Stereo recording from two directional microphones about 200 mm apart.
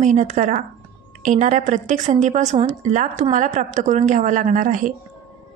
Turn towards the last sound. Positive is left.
turn(degrees=-40)  # may be behind; listen again after turning